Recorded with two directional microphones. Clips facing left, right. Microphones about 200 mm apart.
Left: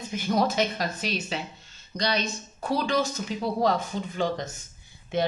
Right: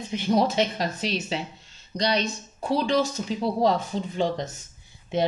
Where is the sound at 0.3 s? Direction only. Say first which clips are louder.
Right 2 dB; 30° right (ahead or behind).